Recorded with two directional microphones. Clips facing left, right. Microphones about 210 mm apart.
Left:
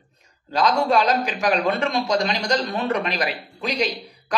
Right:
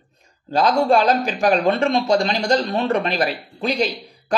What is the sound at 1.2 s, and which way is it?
Speech, 40° right (ahead or behind).